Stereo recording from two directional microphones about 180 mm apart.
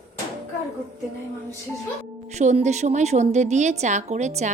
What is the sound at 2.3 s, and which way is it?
A woman's voice, 40° right (ahead or behind).